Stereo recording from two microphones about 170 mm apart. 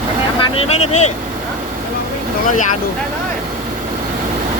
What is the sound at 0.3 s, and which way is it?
Speech, 35° left (ahead or behind).